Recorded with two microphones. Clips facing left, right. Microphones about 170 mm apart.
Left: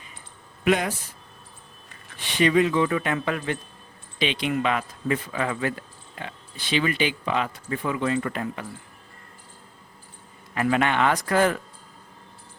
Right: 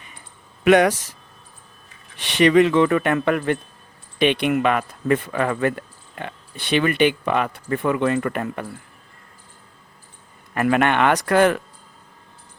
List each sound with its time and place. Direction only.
0.6 s speech: 70° right (ahead or behind)
2.1 s speech: 75° right (ahead or behind); by 8.6 s 60° right (ahead or behind)
10.5 s speech: 60° right (ahead or behind)